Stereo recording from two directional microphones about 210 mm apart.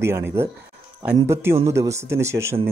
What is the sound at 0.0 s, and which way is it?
Speech, 10° right (ahead or behind).